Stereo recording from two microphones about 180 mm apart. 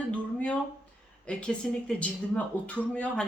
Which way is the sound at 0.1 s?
5° left (ahead or behind).